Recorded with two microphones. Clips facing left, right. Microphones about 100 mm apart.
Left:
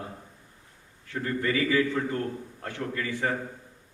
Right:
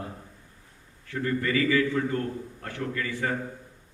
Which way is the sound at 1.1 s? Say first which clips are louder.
Right 1 dB; 25° left (ahead or behind).